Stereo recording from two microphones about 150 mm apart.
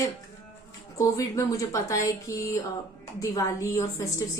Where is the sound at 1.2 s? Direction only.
20° left (ahead or behind).